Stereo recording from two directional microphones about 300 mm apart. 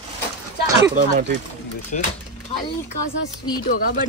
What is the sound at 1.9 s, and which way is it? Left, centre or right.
Speech, left.